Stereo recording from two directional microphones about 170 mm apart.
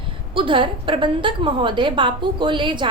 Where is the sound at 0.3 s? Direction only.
30° right (ahead or behind).